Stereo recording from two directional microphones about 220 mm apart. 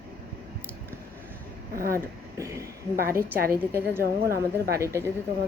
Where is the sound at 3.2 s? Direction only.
45° right (ahead or behind).